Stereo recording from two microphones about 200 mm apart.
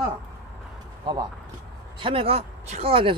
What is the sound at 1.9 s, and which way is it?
Speech, 25° right (ahead or behind).